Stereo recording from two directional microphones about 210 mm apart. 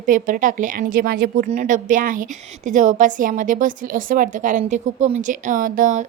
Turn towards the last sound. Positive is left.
turn(degrees=-35)  # may be behind; listen again after turning